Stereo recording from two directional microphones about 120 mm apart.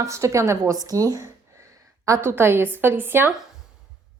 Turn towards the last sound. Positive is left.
turn(degrees=-20)  # may be behind; listen again after turning